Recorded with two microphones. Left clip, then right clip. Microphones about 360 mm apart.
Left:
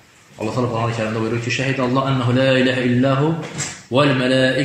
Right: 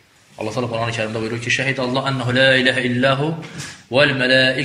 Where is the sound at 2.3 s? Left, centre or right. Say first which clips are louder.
Right 3 dB; right.